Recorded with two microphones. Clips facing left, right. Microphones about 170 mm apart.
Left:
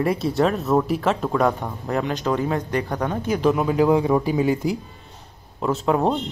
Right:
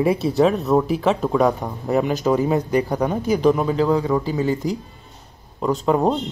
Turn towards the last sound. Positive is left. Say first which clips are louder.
# right 2 dB
turn(degrees=0)  # may be behind; listen again after turning